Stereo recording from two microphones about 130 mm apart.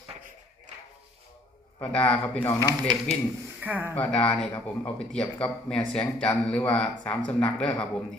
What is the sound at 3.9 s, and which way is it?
A man's voice, 10° left (ahead or behind).